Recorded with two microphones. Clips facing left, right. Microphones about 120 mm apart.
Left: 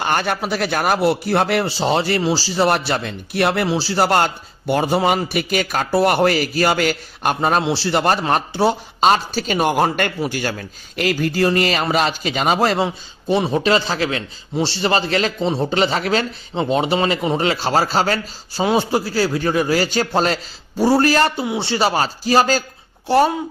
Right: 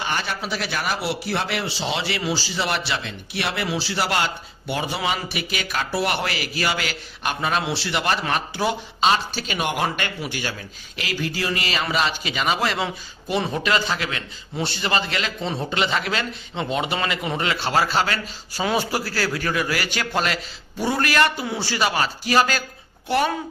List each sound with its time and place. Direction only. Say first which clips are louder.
0.0 s a man's voice: left 7 dB; 55° left (ahead or behind)
3.6 s a man's voice: left 7 dB; 35° left (ahead or behind)
12.8 s speech: left 6 dB; 25° left (ahead or behind)